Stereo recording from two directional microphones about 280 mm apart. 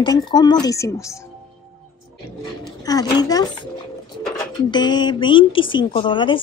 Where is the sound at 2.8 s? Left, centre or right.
Centre.